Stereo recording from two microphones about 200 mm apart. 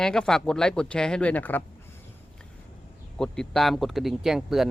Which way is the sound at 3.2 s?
5° left (ahead or behind).